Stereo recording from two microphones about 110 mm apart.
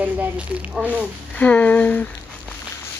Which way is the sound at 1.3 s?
15° left (ahead or behind).